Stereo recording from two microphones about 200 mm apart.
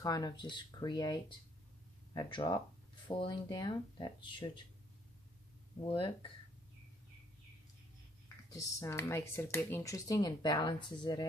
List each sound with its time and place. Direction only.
0.0 s speech: 20° left (ahead or behind)
5.8 s speech: 25° left (ahead or behind)
8.5 s speech: 15° left (ahead or behind)